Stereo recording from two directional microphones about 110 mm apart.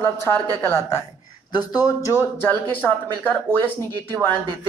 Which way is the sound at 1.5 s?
40° left (ahead or behind).